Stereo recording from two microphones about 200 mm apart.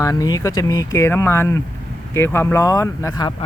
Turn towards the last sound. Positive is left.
turn(degrees=15)  # may be behind; listen again after turning